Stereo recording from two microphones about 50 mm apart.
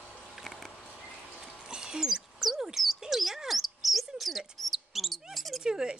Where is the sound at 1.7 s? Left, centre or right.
Centre.